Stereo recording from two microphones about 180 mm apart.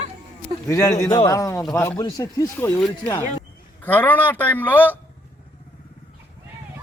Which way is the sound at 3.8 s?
10° left (ahead or behind).